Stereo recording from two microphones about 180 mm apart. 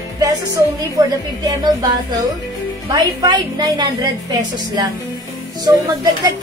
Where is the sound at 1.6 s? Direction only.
25° right (ahead or behind).